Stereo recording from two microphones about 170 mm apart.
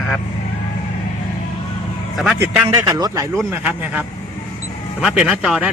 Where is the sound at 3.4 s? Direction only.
5° right (ahead or behind).